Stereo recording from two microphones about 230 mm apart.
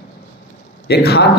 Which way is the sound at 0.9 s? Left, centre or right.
Left.